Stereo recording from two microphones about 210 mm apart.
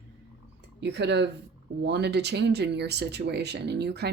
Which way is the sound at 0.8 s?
55° right (ahead or behind).